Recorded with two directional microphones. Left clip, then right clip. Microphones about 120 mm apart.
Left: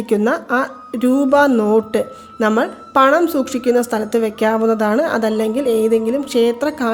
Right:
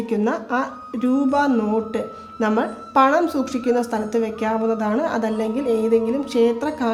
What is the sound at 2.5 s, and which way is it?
Speech, 50° left (ahead or behind).